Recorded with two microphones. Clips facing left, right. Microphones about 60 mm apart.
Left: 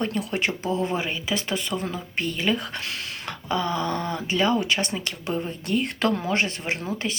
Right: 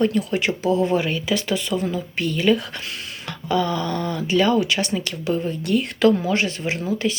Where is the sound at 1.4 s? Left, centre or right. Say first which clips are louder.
Right 5 dB; left.